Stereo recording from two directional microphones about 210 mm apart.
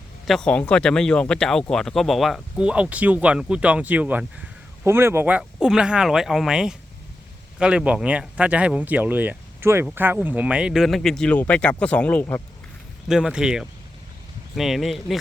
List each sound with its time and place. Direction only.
0.3 s speech: 5° left (ahead or behind)
13.1 s speech: 5° right (ahead or behind)